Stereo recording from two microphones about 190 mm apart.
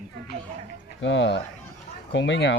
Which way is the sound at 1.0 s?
70° left (ahead or behind).